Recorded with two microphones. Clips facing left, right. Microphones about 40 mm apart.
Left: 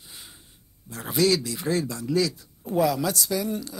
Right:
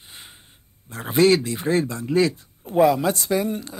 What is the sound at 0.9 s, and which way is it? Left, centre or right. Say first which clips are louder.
A man's voice: right 5 dB; right.